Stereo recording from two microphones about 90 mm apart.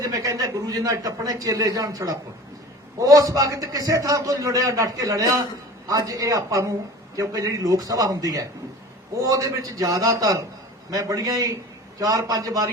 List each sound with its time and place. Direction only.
0.0 s a man's voice: 40° right (ahead or behind)